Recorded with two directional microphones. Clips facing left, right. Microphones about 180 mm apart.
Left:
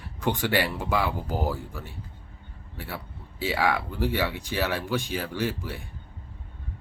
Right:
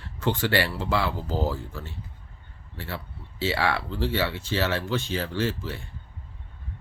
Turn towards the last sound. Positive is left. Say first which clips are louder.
# right 1 dB
turn(degrees=15)  # may be behind; listen again after turning